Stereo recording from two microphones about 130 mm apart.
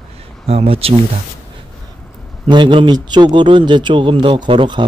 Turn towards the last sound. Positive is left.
turn(degrees=-40)  # may be behind; listen again after turning